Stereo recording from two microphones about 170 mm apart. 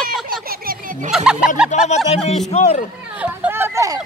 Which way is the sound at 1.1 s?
5° right (ahead or behind).